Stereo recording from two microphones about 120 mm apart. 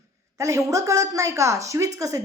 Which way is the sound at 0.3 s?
25° right (ahead or behind).